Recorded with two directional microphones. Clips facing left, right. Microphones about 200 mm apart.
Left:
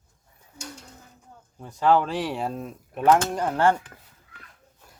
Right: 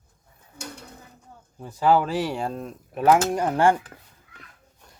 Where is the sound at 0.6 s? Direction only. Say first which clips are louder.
Right 2 dB; 60° right (ahead or behind).